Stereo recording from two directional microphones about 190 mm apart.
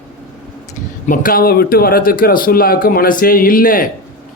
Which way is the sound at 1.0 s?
45° left (ahead or behind).